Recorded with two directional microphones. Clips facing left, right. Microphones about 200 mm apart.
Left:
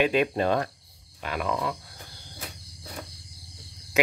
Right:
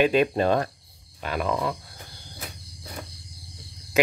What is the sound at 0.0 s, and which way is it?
Speech, 35° right (ahead or behind).